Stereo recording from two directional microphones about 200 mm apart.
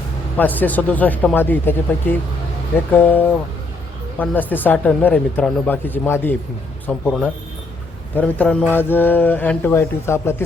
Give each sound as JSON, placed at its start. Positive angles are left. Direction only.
{"t": 0.3, "sound": "mantra", "side_deg": 10}
{"t": 6.8, "sound": "speech", "side_deg": 5}
{"t": 8.1, "sound": "mantra", "side_deg": 5}